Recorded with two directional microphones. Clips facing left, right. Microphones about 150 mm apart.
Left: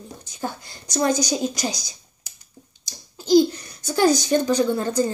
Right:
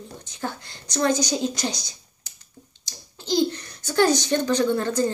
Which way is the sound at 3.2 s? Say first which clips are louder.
Left 6 dB; 10° left (ahead or behind).